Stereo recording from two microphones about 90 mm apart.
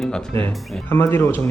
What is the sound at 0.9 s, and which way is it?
Speech, 25° left (ahead or behind).